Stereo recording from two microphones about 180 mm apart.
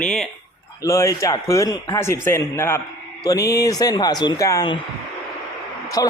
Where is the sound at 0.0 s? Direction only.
5° left (ahead or behind).